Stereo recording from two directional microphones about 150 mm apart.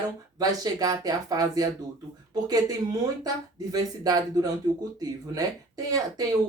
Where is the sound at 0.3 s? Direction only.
25° right (ahead or behind).